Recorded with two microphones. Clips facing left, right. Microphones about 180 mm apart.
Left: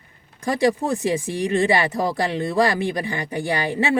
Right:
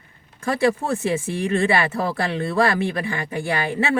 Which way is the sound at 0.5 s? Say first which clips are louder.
Left 1 dB; 15° left (ahead or behind).